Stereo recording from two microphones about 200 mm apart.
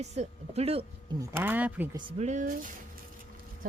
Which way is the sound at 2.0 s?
30° right (ahead or behind).